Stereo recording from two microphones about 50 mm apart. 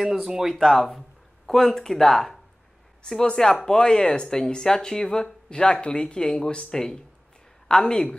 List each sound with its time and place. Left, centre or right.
0.0 s speech: centre
0.6 s speech: centre